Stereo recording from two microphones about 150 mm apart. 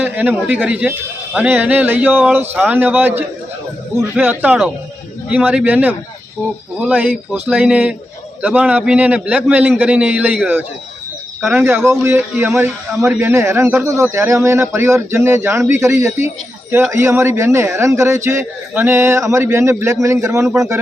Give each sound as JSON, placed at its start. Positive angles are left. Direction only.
{"t": 0.0, "sound": "a man's voice", "side_deg": -10}